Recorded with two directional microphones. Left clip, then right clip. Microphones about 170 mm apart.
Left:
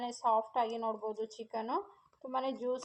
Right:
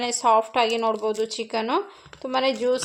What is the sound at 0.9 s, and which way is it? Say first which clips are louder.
Speech: right 13 dB; 55° right (ahead or behind).